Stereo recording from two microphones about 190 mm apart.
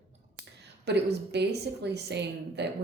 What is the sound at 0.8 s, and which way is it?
Speech, 60° right (ahead or behind).